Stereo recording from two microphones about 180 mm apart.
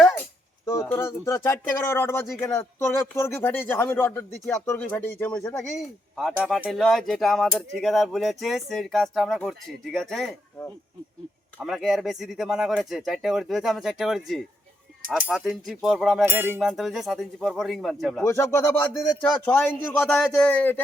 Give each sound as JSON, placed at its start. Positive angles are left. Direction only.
{"t": 0.6, "sound": "music", "side_deg": 15}
{"t": 1.8, "sound": "speech", "side_deg": 15}
{"t": 5.7, "sound": "speech", "side_deg": 0}
{"t": 11.6, "sound": "speech", "side_deg": 0}
{"t": 18.3, "sound": "speech", "side_deg": 15}